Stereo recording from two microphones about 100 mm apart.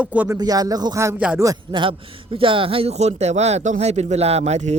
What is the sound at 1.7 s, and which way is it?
A man's voice, 60° right (ahead or behind).